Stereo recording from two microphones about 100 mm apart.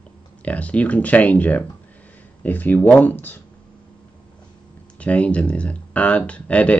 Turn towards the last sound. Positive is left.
turn(degrees=10)  # may be behind; listen again after turning